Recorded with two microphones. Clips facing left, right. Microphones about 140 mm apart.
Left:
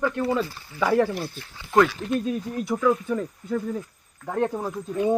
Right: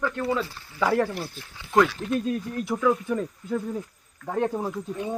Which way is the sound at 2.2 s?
5° left (ahead or behind).